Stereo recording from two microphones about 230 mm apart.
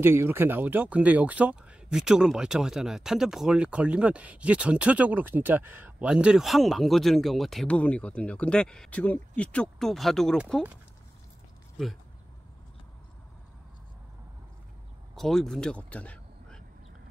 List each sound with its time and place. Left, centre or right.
0.0 s speech: centre
15.1 s speech: centre